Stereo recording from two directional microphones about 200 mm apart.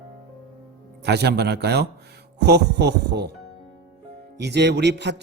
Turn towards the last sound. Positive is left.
turn(degrees=-60)  # may be behind; listen again after turning